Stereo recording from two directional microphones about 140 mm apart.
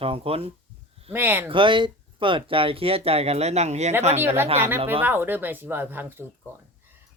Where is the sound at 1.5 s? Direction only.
35° right (ahead or behind).